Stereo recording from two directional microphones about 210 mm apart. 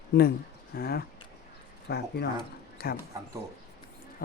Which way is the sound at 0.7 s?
45° left (ahead or behind).